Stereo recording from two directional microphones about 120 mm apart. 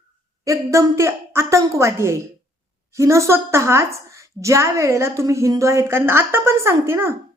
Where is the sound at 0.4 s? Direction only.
25° right (ahead or behind).